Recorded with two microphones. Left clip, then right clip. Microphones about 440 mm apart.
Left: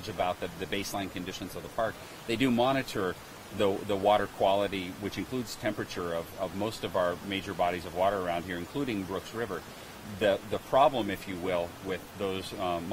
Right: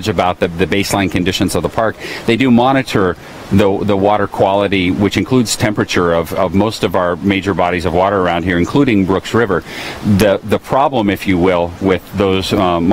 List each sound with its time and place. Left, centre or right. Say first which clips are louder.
0.2 s speech: right 17 dB; right